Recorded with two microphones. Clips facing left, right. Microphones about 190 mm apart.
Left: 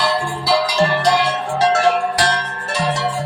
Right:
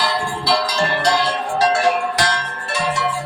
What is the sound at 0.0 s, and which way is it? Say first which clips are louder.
Music: left 2 dB; 5° left (ahead or behind).